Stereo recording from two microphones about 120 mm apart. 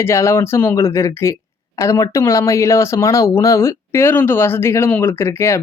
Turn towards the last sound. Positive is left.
turn(degrees=20)  # may be behind; listen again after turning